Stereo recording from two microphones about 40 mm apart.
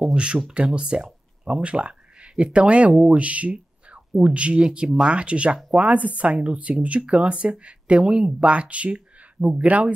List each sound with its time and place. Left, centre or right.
0.1 s speech: right
3.5 s a sound: right
4.2 s speech: right
4.6 s speech: centre
5.1 s speech: right